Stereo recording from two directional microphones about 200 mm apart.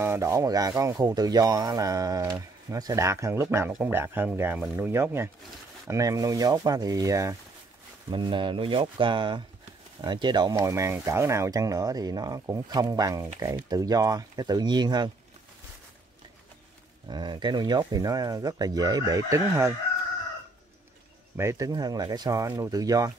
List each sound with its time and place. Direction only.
0.0 s speech: 15° right (ahead or behind)
17.1 s speech: 20° right (ahead or behind)
21.4 s speech: 15° right (ahead or behind)